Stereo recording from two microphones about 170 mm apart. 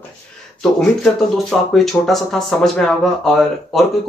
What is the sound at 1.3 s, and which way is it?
Speech, centre (ahead or behind).